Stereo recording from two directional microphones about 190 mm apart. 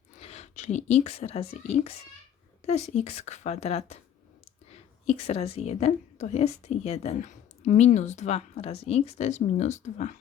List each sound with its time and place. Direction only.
0.2 s a woman's voice: 35° left (ahead or behind)
5.0 s a woman's voice: 35° left (ahead or behind)